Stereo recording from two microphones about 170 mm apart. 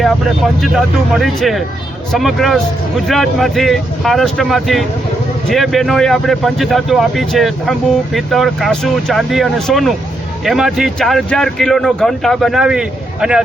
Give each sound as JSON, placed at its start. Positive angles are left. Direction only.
{"t": 0.0, "sound": "speech", "side_deg": 0}